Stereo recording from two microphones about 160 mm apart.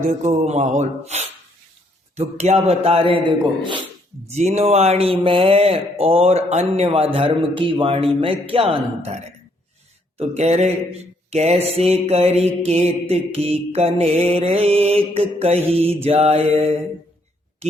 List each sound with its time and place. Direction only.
0.2 s speech: 45° right (ahead or behind)
4.3 s speech: 45° right (ahead or behind)